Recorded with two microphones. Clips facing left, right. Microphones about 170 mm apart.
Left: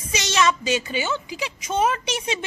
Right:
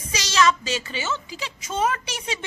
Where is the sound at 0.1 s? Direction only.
20° left (ahead or behind).